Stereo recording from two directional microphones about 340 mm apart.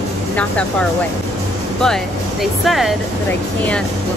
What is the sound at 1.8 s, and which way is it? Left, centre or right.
Speech, centre.